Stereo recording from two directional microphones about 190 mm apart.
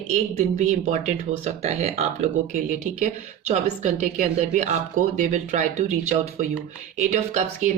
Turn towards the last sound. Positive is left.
turn(degrees=-40)  # may be behind; listen again after turning